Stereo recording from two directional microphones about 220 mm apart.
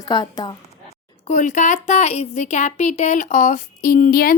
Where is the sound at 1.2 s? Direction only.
35° left (ahead or behind).